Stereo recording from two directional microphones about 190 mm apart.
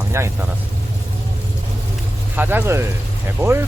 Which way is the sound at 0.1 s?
15° right (ahead or behind).